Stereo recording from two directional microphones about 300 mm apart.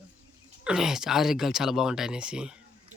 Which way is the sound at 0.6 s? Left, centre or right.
Centre.